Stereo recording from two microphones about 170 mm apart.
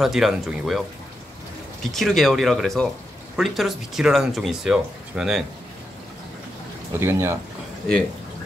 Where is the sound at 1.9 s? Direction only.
Centre (ahead or behind).